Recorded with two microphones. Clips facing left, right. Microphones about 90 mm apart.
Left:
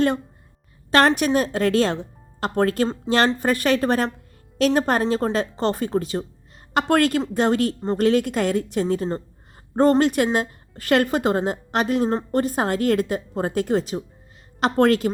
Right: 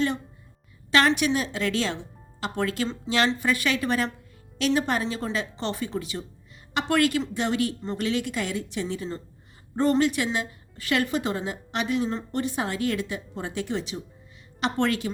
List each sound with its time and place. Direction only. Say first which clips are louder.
0.9 s a woman's voice: left 4 dB; 45° left (ahead or behind)